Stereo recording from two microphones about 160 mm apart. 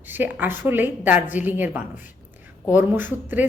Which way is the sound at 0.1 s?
10° right (ahead or behind).